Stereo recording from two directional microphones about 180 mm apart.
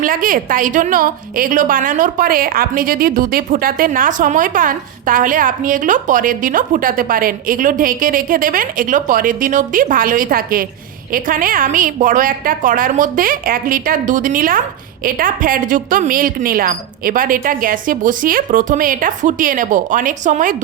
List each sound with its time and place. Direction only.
0.0 s a woman's voice: 50° right (ahead or behind)